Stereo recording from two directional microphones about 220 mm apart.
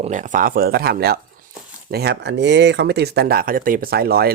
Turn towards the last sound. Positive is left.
turn(degrees=-45)  # may be behind; listen again after turning